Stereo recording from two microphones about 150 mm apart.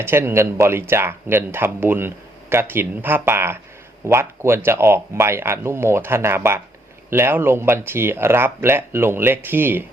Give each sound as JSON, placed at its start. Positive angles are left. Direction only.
{"t": 0.0, "sound": "speech", "side_deg": -15}